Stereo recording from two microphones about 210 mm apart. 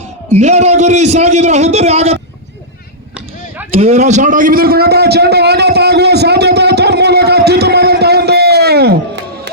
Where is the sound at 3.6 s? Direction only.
30° right (ahead or behind).